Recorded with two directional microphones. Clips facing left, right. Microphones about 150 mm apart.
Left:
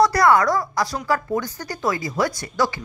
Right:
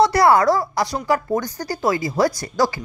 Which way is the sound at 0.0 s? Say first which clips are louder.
Right 2 dB; 25° right (ahead or behind).